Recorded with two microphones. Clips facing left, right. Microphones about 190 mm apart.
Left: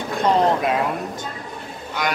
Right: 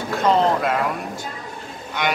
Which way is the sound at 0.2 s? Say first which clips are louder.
Even; 20° left (ahead or behind).